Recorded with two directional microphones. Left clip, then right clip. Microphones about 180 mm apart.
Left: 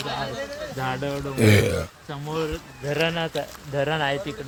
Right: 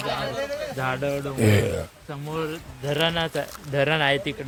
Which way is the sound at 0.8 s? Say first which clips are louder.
Right 1 dB; 5° left (ahead or behind).